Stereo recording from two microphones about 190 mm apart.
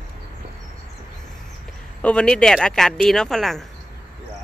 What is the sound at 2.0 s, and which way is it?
Speech, 5° left (ahead or behind).